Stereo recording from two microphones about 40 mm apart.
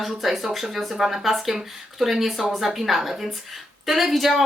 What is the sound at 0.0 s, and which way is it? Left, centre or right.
Speech, centre.